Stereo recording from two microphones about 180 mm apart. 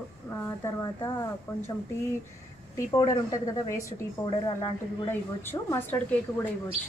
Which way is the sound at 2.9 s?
20° left (ahead or behind).